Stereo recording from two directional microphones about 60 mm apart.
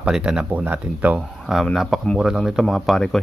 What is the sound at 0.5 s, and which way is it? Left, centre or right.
Speech, right.